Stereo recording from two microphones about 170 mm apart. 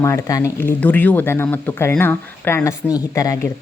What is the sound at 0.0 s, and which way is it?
A woman's voice, 20° left (ahead or behind).